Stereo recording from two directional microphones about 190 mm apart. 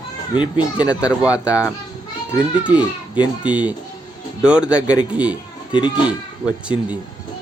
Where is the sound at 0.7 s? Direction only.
5° right (ahead or behind).